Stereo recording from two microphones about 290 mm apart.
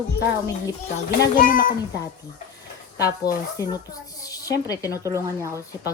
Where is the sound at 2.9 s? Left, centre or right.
Centre.